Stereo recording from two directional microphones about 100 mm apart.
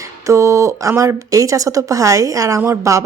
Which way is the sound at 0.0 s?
30° right (ahead or behind).